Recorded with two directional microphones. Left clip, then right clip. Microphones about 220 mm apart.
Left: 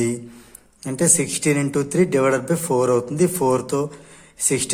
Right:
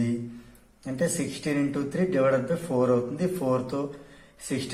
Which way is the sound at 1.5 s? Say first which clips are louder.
Left 8 dB; 50° left (ahead or behind).